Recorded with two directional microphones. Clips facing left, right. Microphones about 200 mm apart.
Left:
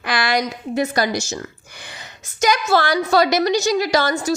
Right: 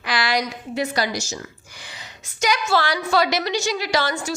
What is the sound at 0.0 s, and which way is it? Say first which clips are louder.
A woman's voice: left 3 dB; 50° left (ahead or behind).